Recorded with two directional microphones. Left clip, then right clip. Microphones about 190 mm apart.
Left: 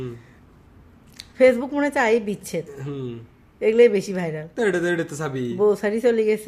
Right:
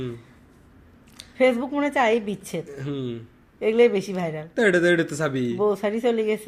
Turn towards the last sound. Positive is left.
turn(degrees=10)  # may be behind; listen again after turning